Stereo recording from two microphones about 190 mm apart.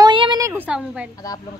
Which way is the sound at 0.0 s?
25° right (ahead or behind).